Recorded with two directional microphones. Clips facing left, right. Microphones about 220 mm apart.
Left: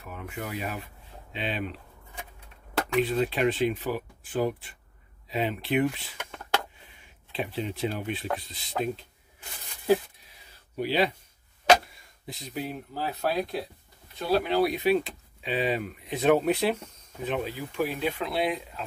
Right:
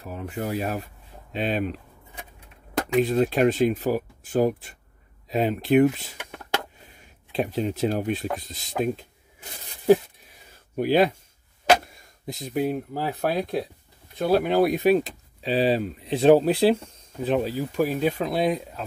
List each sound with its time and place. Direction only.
0.0 s speech: 35° right (ahead or behind)
3.0 s speech: 45° right (ahead or behind)
7.3 s speech: 45° right (ahead or behind)
10.8 s speech: 50° right (ahead or behind)